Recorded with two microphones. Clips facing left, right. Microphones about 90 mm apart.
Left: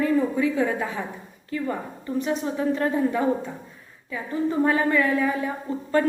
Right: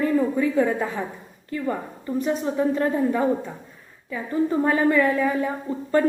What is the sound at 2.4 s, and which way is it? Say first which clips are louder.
Speech: right 2 dB; 30° right (ahead or behind).